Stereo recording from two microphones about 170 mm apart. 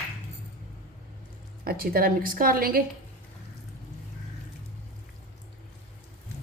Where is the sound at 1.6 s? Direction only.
60° right (ahead or behind).